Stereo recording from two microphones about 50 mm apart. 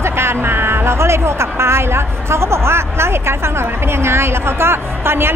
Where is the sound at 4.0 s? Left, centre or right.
Right.